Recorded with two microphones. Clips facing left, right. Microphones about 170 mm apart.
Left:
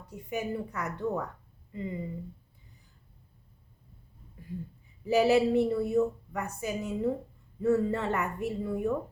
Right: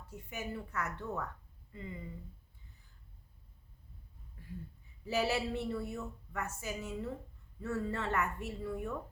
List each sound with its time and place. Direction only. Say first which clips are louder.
0.1 s a woman's voice: left 9 dB; 15° left (ahead or behind)
5.0 s a woman's voice: left 10 dB; 15° left (ahead or behind)